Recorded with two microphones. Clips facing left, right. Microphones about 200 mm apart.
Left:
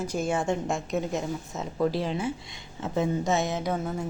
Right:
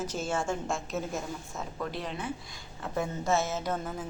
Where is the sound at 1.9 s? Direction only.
30° left (ahead or behind); by 4.0 s 10° left (ahead or behind).